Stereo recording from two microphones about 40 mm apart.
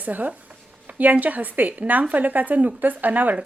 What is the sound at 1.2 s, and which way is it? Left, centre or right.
A woman's voice, right.